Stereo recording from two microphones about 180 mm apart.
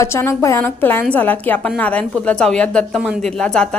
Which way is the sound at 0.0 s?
15° left (ahead or behind).